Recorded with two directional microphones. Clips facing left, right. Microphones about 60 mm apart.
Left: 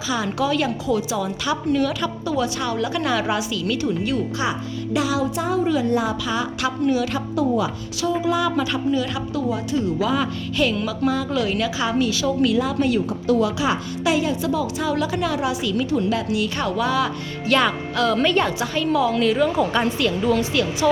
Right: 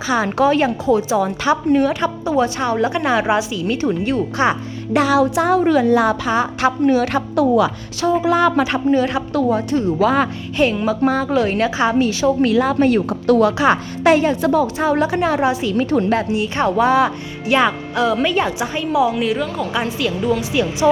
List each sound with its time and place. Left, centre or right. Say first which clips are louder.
0.0 s a woman's voice: right 7 dB; right
3.8 s a woman's voice: right 4 dB; right
4.9 s a woman's voice: right 8 dB; right
6.2 s speech: right 6 dB; right
8.9 s a woman's voice: right 6 dB; right
9.3 s speech: right 5 dB; right
10.6 s a woman's voice: right 5 dB; right
12.5 s speech: right 5 dB; right
15.9 s speech: right 6 dB; right
16.3 s a woman's voice: right 5 dB; right
17.4 s a woman's voice: right 3 dB; centre
20.5 s speech: right 4 dB; right